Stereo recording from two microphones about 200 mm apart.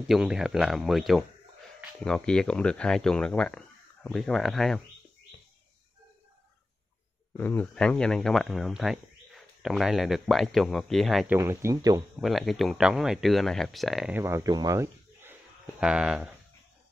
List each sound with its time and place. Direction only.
0.1 s speech: 5° right (ahead or behind)
7.3 s speech: 10° left (ahead or behind)
11.3 s speech: 15° right (ahead or behind)
12.2 s speech: centre (ahead or behind)